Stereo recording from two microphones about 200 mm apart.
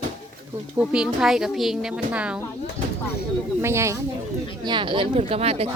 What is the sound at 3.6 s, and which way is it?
Speech, 15° right (ahead or behind).